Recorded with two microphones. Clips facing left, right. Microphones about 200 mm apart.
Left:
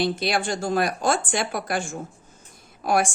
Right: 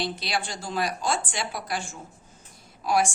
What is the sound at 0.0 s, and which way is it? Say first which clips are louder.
A woman's voice: left 6 dB; 50° left (ahead or behind).